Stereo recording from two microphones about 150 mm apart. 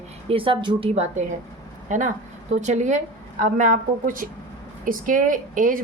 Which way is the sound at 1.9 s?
60° right (ahead or behind).